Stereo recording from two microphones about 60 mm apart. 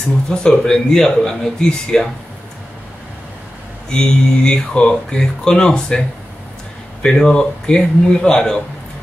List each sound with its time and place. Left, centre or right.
0.3 s speech: centre
3.9 s speech: centre